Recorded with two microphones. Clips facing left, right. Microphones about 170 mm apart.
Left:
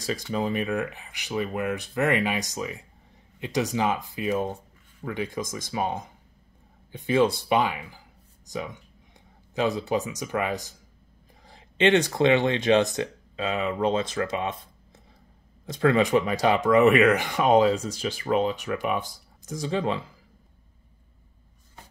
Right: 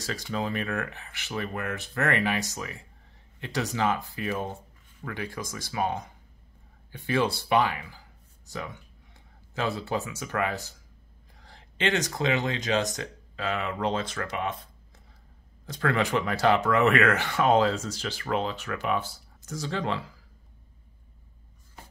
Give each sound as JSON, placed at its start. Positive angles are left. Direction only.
{"t": 0.0, "sound": "speech", "side_deg": 15}
{"t": 15.6, "sound": "speech", "side_deg": 20}